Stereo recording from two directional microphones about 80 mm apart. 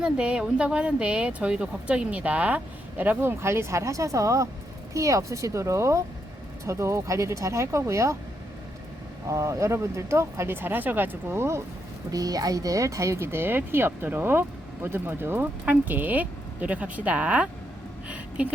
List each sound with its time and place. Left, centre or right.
0.0 s speech: centre; by 8.1 s right
9.2 s speech: right
12.1 s speech: right; by 17.5 s centre